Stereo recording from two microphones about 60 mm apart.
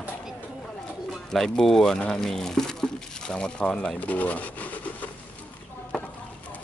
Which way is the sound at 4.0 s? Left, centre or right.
Left.